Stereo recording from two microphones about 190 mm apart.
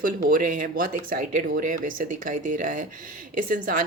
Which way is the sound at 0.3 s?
45° right (ahead or behind).